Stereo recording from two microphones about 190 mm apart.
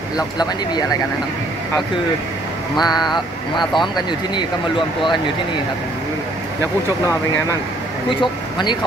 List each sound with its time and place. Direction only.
2.7 s speech: 20° left (ahead or behind)
8.2 s speech: 25° left (ahead or behind)